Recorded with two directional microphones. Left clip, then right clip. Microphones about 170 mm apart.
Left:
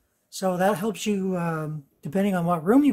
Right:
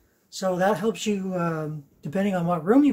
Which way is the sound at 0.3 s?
45° left (ahead or behind).